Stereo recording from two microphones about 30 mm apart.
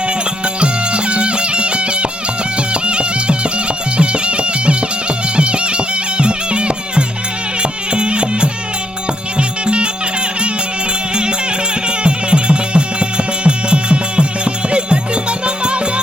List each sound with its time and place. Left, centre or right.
0.4 s music: right
11.1 s music: right